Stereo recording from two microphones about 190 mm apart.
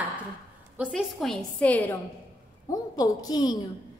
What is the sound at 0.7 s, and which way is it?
A woman's voice, centre (ahead or behind).